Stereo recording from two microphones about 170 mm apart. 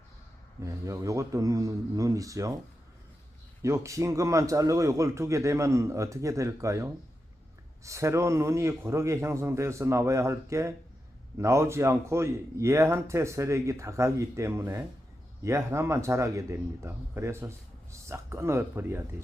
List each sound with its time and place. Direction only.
0.6 s a man's voice: 20° right (ahead or behind)
3.6 s a man's voice: 20° right (ahead or behind)